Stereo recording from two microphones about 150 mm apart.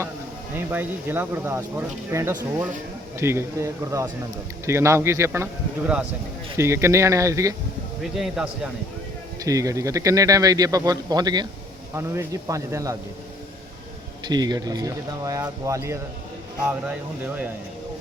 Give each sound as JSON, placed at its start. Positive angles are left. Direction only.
{"t": 0.5, "sound": "speech", "side_deg": -15}
{"t": 8.0, "sound": "speech", "side_deg": 0}
{"t": 9.4, "sound": "speech", "side_deg": -20}
{"t": 14.3, "sound": "speech", "side_deg": -25}
{"t": 17.2, "sound": "speech", "side_deg": -10}